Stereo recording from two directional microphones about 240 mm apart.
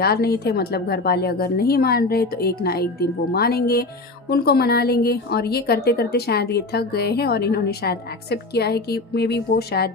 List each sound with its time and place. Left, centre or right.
0.0 s a woman's voice: left